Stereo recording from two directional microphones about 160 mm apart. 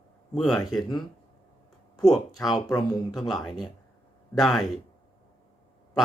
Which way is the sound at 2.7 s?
25° left (ahead or behind).